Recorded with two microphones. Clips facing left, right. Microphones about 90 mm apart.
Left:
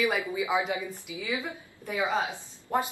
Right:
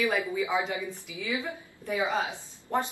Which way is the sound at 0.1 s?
15° left (ahead or behind).